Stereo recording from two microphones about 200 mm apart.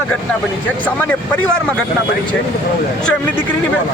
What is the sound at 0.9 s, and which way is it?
Speech, 5° left (ahead or behind).